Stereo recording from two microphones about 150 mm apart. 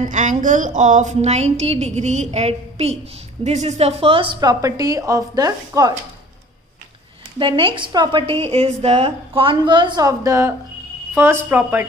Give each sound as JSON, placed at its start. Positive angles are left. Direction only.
{"t": 0.0, "sound": "a woman's voice", "side_deg": -55}
{"t": 7.3, "sound": "a woman's voice", "side_deg": -35}